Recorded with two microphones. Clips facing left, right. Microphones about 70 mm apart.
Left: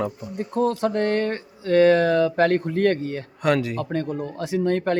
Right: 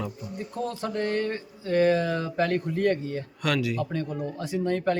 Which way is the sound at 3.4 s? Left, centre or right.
Left.